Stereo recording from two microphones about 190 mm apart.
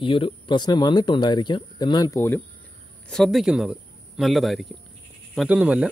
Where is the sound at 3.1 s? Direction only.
Centre (ahead or behind).